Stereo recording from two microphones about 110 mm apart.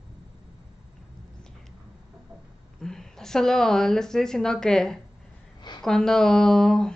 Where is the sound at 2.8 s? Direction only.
5° left (ahead or behind).